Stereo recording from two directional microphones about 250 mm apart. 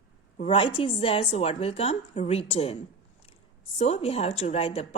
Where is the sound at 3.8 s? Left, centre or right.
Left.